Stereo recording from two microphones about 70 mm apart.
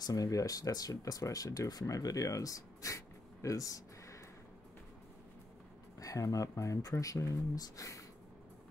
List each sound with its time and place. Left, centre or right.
0.0 s speech: left
3.4 s a sound: left
5.9 s speech: left